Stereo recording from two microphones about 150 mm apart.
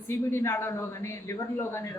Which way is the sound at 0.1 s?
15° left (ahead or behind).